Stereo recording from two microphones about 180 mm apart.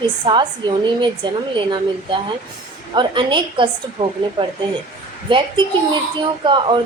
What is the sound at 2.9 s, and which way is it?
A woman's voice, 25° right (ahead or behind).